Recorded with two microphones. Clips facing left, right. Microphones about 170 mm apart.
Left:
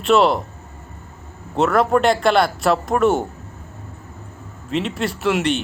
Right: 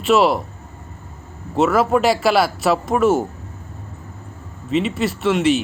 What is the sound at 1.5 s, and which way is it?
Speech, centre (ahead or behind).